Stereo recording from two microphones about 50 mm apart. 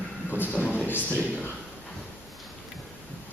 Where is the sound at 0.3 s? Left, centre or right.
Left.